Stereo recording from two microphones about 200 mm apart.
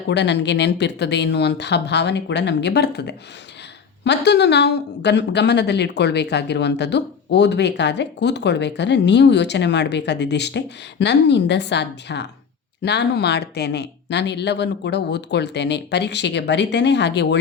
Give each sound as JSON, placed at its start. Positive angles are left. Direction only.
{"t": 0.1, "sound": "speech", "side_deg": 60}